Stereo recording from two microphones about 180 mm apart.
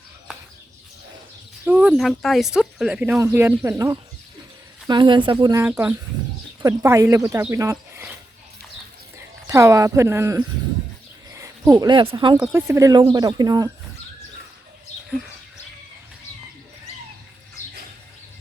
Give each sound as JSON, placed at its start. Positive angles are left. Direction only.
{"t": 1.6, "sound": "speech", "side_deg": -10}
{"t": 9.1, "sound": "speech", "side_deg": -15}
{"t": 12.4, "sound": "speech", "side_deg": -10}